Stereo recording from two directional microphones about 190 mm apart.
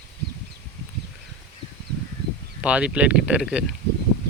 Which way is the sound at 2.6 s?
5° right (ahead or behind).